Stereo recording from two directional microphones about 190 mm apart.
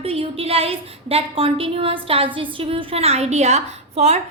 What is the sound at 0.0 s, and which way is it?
A woman's voice, 30° right (ahead or behind).